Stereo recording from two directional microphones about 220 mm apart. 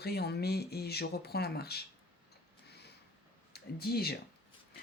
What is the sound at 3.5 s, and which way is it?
Speech, 45° left (ahead or behind).